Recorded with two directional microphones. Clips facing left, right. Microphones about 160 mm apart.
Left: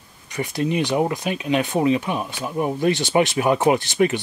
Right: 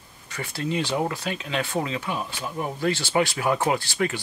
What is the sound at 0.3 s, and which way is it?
Speech, 15° left (ahead or behind).